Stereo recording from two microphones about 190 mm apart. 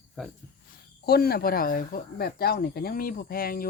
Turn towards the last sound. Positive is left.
turn(degrees=50)  # may be behind; listen again after turning